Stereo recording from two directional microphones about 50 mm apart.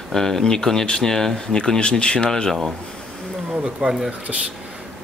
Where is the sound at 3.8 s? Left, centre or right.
Centre.